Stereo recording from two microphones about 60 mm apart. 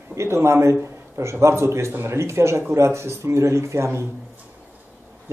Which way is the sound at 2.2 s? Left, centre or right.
Right.